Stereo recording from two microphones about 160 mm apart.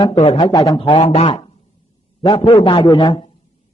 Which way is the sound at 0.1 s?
40° left (ahead or behind).